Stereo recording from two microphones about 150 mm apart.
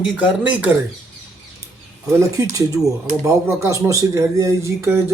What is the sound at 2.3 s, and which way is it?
Speech, 20° right (ahead or behind).